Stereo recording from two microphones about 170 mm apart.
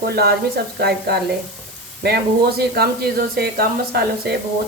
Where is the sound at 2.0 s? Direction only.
70° right (ahead or behind).